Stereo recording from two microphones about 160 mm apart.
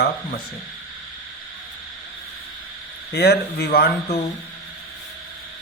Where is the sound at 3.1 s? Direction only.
90° left.